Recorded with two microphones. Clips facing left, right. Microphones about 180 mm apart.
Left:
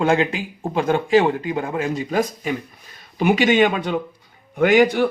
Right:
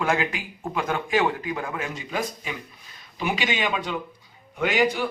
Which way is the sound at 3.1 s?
55° left (ahead or behind).